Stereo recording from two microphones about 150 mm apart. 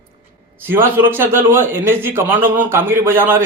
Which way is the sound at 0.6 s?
15° right (ahead or behind).